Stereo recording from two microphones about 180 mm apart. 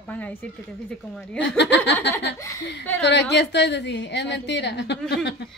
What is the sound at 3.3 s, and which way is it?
A woman's voice, 70° left (ahead or behind).